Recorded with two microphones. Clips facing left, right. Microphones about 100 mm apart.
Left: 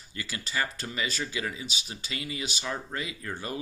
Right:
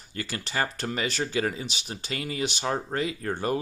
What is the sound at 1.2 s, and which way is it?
Speech, 45° right (ahead or behind).